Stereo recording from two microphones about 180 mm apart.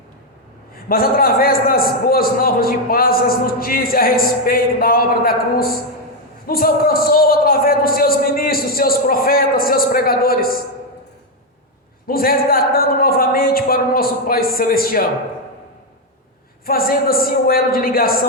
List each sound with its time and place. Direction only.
0.9 s a man's voice: 55° left (ahead or behind)
12.0 s a man's voice: 55° left (ahead or behind)
16.6 s a man's voice: 55° left (ahead or behind)